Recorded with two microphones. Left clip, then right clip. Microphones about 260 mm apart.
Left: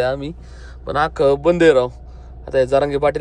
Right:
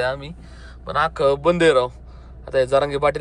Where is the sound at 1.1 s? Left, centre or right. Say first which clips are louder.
Left 4 dB; centre.